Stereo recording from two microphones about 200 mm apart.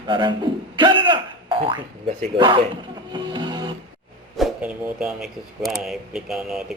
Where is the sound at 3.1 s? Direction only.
20° right (ahead or behind).